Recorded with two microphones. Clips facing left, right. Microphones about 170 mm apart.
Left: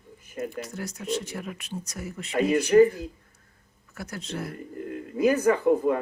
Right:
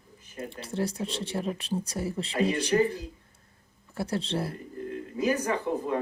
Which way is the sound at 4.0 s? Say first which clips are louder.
Right 5 dB; 30° right (ahead or behind).